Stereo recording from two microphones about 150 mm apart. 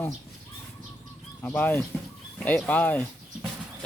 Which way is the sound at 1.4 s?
10° left (ahead or behind).